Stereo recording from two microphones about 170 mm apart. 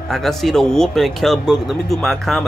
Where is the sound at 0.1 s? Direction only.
Centre (ahead or behind).